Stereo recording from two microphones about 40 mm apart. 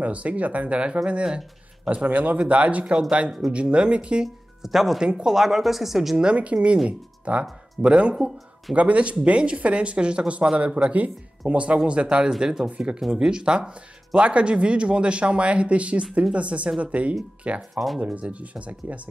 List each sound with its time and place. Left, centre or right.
0.0 s speech: right
2.0 s speech: right; by 3.5 s centre
3.5 s speech: right
4.6 s speech: centre
5.0 s speech: right
5.3 s speech: centre
6.1 s speech: right
10.9 s speech: right
12.3 s speech: centre
17.6 s speech: centre
18.0 s speech: right